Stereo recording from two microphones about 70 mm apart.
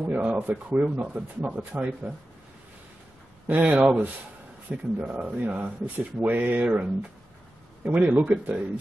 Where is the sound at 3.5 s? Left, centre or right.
Right.